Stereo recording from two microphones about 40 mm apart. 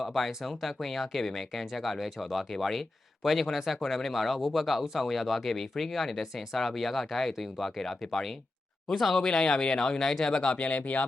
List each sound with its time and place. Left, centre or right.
0.0 s speech: centre; by 10.7 s left
10.7 s speech: left